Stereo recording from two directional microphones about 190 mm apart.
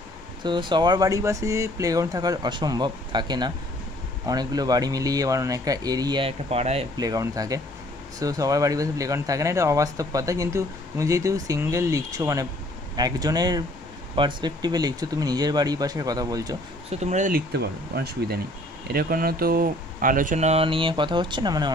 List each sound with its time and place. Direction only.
0.4 s speech: 25° right (ahead or behind)
7.0 s speech: 20° right (ahead or behind)
16.9 s speech: 40° right (ahead or behind)
17.5 s speech: 60° right (ahead or behind); by 21.7 s 20° right (ahead or behind)